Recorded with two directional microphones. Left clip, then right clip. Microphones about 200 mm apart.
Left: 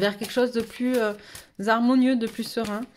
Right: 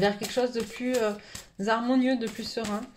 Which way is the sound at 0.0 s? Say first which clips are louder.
Left 2 dB; 45° left (ahead or behind).